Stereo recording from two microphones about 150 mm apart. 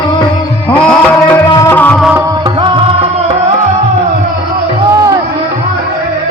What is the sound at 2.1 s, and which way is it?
Music, 25° right (ahead or behind).